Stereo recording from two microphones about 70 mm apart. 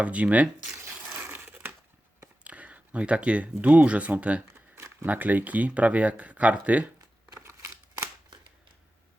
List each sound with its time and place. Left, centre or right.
0.0 s speech: centre
0.9 s crushing: right
1.2 s crumpling: right
2.4 s speech: centre